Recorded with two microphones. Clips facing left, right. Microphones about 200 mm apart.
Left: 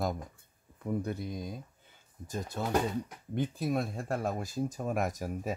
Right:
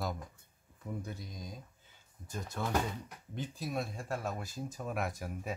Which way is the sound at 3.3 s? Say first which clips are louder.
Left 7 dB; 55° left (ahead or behind).